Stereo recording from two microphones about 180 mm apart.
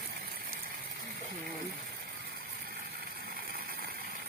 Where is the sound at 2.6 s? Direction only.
60° right (ahead or behind).